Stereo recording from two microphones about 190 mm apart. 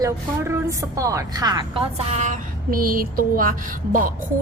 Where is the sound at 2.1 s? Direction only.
40° right (ahead or behind).